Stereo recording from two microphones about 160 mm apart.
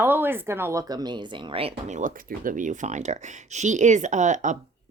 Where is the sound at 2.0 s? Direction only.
60° right (ahead or behind).